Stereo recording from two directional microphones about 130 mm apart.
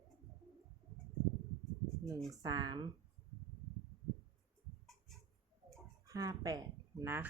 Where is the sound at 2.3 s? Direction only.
30° right (ahead or behind).